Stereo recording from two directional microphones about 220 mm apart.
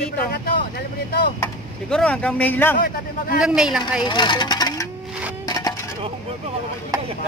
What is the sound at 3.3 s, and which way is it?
Speech, 5° right (ahead or behind).